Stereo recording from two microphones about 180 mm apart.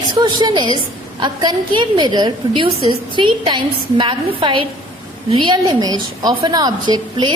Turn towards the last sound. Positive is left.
turn(degrees=-25)  # may be behind; listen again after turning